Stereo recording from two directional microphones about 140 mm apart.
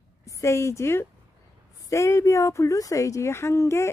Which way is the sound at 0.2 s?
20° left (ahead or behind).